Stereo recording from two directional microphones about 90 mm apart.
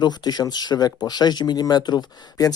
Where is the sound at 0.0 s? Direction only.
50° left (ahead or behind).